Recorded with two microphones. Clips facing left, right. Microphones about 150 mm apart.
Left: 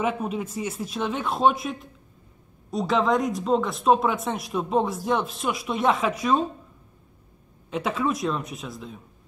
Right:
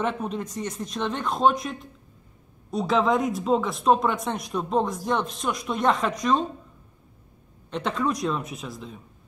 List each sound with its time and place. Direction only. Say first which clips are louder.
0.0 s speech: left 1 dB; 10° left (ahead or behind)
7.7 s speech: left 1 dB; 5° left (ahead or behind)